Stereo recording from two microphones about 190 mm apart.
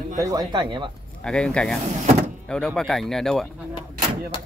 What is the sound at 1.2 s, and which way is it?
Speech, 5° left (ahead or behind).